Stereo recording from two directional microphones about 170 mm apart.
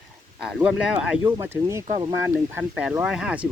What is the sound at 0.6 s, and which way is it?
Speech, 5° right (ahead or behind).